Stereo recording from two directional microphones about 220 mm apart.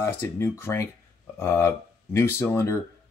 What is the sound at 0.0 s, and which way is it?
Speech, 10° left (ahead or behind).